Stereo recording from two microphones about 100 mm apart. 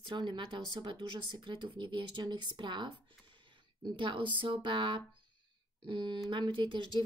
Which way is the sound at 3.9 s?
55° right (ahead or behind).